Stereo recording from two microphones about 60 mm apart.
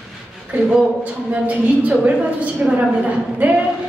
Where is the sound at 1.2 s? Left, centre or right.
Right.